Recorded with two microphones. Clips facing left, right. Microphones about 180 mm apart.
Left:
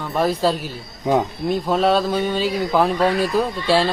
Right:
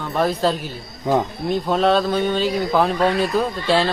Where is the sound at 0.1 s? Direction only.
5° left (ahead or behind).